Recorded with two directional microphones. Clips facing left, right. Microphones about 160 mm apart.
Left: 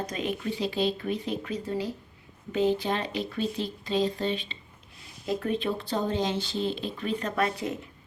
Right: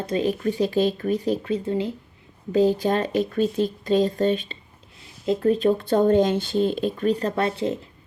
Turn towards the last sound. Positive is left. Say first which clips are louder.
# right 5 dB
turn(degrees=-30)  # may be behind; listen again after turning